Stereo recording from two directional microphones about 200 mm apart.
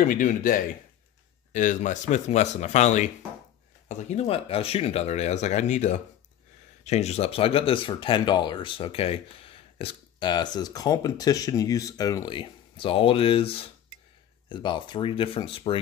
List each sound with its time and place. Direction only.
0.0 s speech: 45° left (ahead or behind); by 15.8 s 25° left (ahead or behind)